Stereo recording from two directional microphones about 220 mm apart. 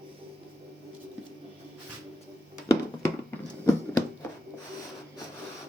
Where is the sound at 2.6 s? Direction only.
15° left (ahead or behind).